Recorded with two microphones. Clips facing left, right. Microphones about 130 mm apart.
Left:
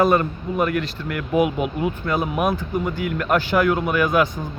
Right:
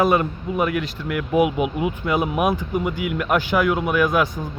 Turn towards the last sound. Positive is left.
turn(degrees=-5)  # may be behind; listen again after turning